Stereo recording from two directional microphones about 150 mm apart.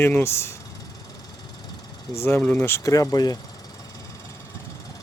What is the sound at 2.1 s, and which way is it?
Speech, 15° left (ahead or behind).